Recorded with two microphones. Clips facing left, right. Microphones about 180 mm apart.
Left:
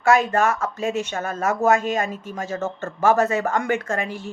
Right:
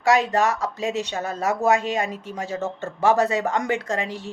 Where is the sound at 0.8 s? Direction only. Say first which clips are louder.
Left 1 dB; 20° right (ahead or behind).